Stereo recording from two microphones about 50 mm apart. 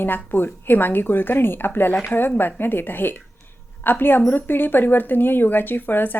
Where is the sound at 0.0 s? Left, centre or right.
Left.